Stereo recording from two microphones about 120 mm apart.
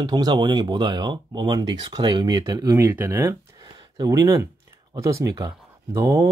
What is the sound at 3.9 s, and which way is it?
Speech, 35° right (ahead or behind).